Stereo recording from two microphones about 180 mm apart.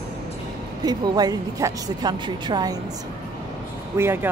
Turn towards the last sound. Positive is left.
turn(degrees=-15)  # may be behind; listen again after turning